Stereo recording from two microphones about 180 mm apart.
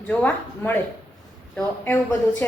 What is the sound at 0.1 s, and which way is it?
A woman's voice, 10° left (ahead or behind).